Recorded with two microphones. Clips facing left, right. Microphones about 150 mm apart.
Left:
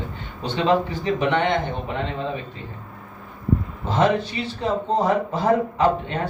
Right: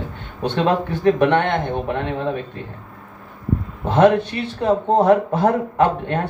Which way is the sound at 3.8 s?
60° right (ahead or behind).